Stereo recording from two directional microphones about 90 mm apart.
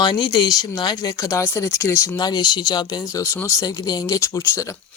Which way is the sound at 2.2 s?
50° left (ahead or behind).